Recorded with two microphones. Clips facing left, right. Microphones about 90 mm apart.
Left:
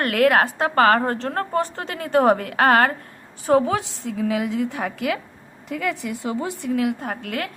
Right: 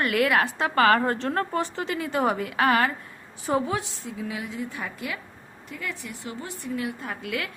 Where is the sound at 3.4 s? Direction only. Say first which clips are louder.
Left 7 dB; 65° left (ahead or behind).